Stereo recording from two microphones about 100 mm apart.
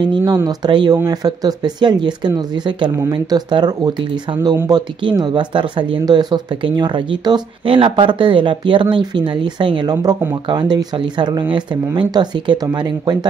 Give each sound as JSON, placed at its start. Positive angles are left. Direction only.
{"t": 0.0, "sound": "speech", "side_deg": -45}
{"t": 7.6, "sound": "speech", "side_deg": -60}